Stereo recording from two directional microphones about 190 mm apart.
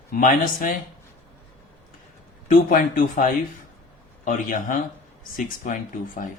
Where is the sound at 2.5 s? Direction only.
50° left (ahead or behind).